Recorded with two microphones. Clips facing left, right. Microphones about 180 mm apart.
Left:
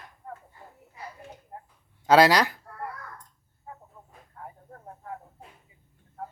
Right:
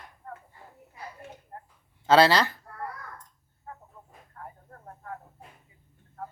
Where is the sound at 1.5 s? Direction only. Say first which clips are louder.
Left 2 dB; 15° left (ahead or behind).